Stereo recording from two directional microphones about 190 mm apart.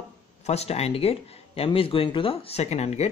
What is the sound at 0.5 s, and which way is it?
Speech, 35° left (ahead or behind).